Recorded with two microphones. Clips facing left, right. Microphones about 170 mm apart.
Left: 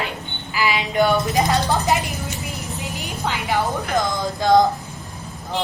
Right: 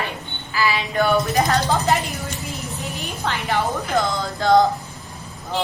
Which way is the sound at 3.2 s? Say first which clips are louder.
Even; 10° left (ahead or behind).